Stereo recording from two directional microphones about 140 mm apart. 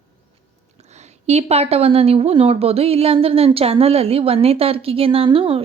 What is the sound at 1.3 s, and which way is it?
A woman's voice, 50° right (ahead or behind).